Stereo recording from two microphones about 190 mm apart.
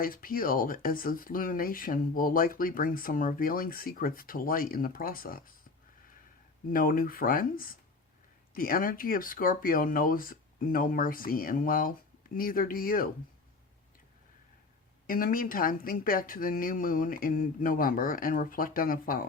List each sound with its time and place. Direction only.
0.0 s speech: 50° left (ahead or behind)
6.7 s speech: 50° left (ahead or behind)
15.0 s speech: 50° left (ahead or behind)